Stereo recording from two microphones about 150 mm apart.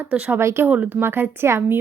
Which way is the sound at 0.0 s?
10° right (ahead or behind).